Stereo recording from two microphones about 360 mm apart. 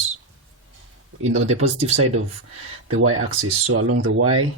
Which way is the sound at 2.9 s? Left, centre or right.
Right.